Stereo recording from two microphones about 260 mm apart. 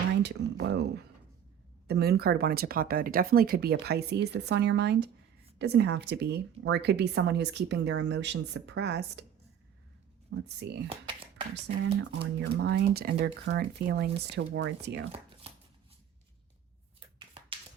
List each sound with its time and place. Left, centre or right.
0.2 s a sound: right
1.9 s speech: right
10.2 s speech: right
10.8 s a sound: centre
12.2 s speech: right
15.1 s shuffling cards: right